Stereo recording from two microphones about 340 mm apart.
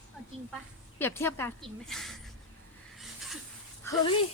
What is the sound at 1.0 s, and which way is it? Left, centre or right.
A woman's voice, centre.